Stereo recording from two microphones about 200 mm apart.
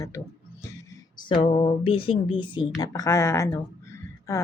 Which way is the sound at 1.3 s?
25° left (ahead or behind).